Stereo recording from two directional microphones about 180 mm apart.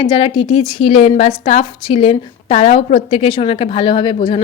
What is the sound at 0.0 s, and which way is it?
A woman's voice, 30° left (ahead or behind).